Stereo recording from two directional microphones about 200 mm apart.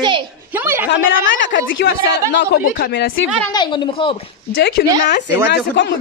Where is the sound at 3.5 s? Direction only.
20° left (ahead or behind).